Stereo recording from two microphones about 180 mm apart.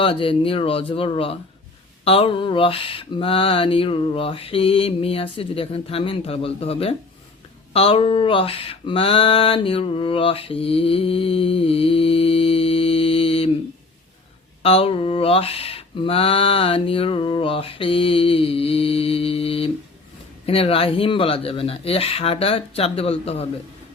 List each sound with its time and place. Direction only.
0.0 s speech: 30° left (ahead or behind)
7.7 s mantra: 30° left (ahead or behind)
14.6 s speech: 30° left (ahead or behind)